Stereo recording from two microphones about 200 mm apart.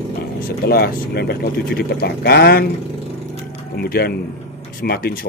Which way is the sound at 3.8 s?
50° left (ahead or behind).